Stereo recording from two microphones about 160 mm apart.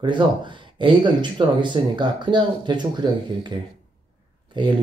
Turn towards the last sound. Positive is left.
turn(degrees=-30)  # may be behind; listen again after turning